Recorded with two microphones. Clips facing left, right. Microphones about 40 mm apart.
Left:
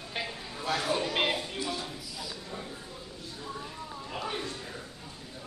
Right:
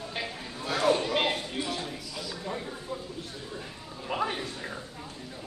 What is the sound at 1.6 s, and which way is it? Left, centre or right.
Speech, right.